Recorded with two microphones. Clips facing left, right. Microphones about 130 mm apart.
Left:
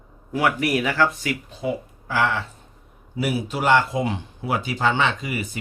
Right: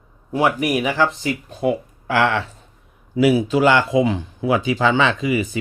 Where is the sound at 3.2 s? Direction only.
90° right.